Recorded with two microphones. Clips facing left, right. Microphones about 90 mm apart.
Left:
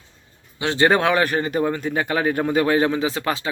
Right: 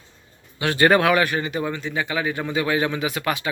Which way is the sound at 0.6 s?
20° left (ahead or behind).